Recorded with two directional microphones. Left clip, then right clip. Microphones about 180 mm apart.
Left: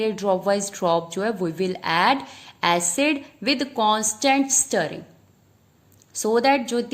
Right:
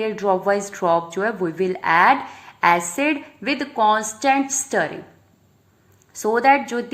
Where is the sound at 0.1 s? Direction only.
30° left (ahead or behind).